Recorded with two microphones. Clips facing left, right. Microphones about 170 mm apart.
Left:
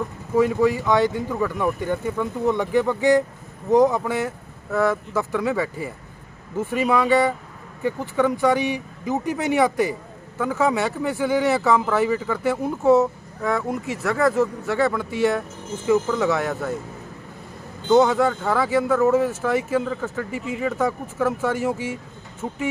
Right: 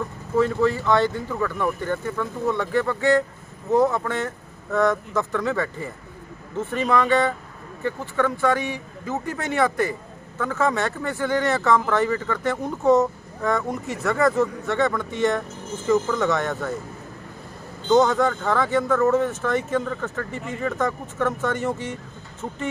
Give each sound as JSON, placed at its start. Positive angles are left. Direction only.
{"t": 0.4, "sound": "speech", "side_deg": 10}
{"t": 17.8, "sound": "speech", "side_deg": 5}